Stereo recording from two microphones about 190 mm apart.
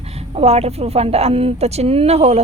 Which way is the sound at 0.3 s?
35° right (ahead or behind).